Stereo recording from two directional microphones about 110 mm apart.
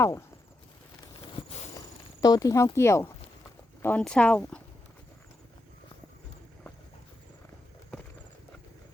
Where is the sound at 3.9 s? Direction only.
10° left (ahead or behind).